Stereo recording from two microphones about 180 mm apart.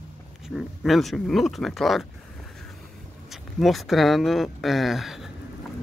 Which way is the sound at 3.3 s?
Centre (ahead or behind).